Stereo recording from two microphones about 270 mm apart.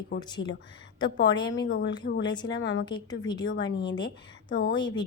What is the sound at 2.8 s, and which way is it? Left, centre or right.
Speech, centre.